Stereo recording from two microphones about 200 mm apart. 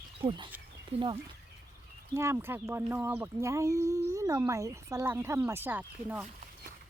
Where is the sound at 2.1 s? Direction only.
15° right (ahead or behind).